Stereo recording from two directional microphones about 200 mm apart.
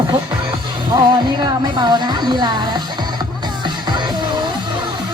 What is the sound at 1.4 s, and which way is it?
Speech, 20° right (ahead or behind).